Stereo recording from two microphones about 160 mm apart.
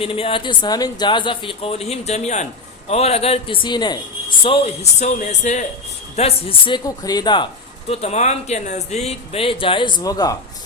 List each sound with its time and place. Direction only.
0.0 s speech: 35° left (ahead or behind)
4.4 s speech: 35° left (ahead or behind)
6.1 s speech: 35° left (ahead or behind)
7.9 s speech: 40° left (ahead or behind); by 10.3 s 25° left (ahead or behind)